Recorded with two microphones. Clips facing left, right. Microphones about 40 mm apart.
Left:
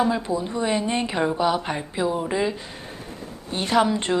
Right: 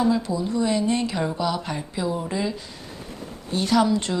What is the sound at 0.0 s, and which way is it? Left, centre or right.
A woman's voice, left.